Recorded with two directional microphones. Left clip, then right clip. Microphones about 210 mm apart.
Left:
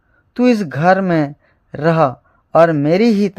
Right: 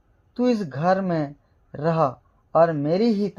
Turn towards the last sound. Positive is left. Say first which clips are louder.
# left 8 dB
turn(degrees=30)  # may be behind; listen again after turning